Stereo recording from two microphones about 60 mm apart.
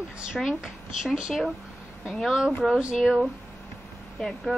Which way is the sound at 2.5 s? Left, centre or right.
Centre.